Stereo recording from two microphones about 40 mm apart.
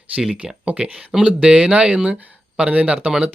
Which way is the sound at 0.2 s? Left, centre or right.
Centre.